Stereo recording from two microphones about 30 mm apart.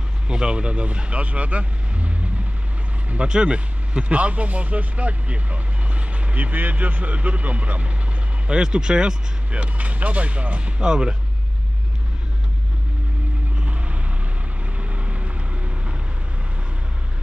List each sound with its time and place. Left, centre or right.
0.3 s speech: right
3.3 s speech: right
4.0 s speech: right
7.2 s speech: right
8.5 s speech: right
9.5 s speech: right
10.8 s speech: right
13.6 s vehicle: right